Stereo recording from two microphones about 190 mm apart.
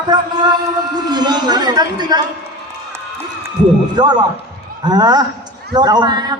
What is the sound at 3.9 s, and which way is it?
A man's voice, 20° right (ahead or behind).